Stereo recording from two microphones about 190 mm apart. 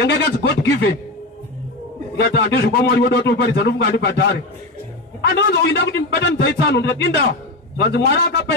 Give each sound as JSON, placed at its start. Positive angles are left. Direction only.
{"t": 0.0, "sound": "a man's voice", "side_deg": 65}
{"t": 2.1, "sound": "a man's voice", "side_deg": 65}
{"t": 5.2, "sound": "a man's voice", "side_deg": 60}